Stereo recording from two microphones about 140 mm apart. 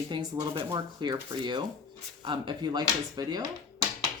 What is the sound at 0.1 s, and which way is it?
Speech, 30° right (ahead or behind).